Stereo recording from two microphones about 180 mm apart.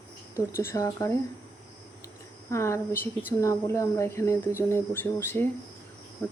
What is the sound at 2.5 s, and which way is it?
Speech, 15° left (ahead or behind).